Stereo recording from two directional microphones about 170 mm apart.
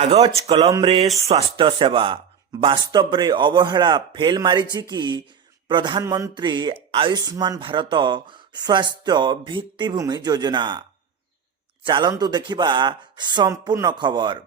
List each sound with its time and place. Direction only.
0.0 s speech: 40° right (ahead or behind)
11.9 s speech: 25° right (ahead or behind)